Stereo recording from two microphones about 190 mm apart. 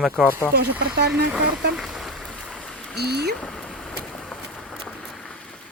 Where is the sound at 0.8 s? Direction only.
55° right (ahead or behind).